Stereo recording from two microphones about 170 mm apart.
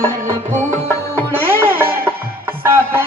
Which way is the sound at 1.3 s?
15° right (ahead or behind).